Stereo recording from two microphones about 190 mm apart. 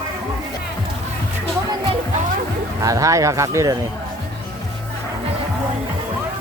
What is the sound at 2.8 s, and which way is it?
Speech, 15° right (ahead or behind).